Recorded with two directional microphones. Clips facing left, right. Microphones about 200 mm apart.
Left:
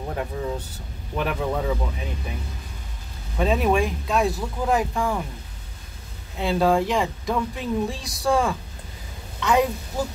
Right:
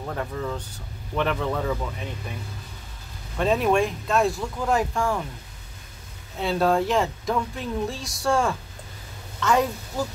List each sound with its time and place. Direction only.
0.0 s a man's voice: 15° left (ahead or behind)
3.3 s speech: centre (ahead or behind)
6.4 s speech: centre (ahead or behind)